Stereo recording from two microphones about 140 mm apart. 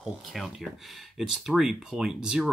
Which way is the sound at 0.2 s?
Centre (ahead or behind).